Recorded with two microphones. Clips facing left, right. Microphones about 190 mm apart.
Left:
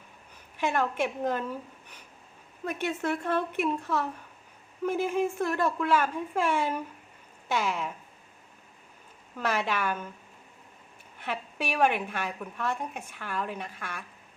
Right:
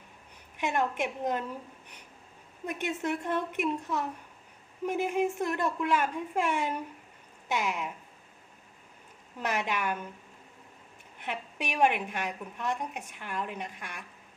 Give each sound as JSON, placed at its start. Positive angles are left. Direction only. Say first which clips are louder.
{"t": 0.5, "sound": "speech", "louder": "left 2 dB", "side_deg": -15}
{"t": 2.6, "sound": "speech", "louder": "left 2 dB", "side_deg": -15}
{"t": 9.4, "sound": "speech", "louder": "left 2 dB", "side_deg": -15}
{"t": 11.2, "sound": "a woman's voice", "louder": "left 2 dB", "side_deg": -20}